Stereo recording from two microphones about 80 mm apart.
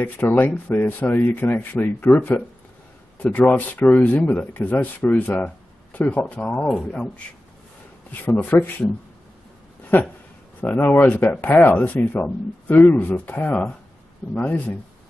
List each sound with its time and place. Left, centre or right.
0.0 s speech: left
3.2 s speech: centre
8.1 s speech: left
9.9 s speech: left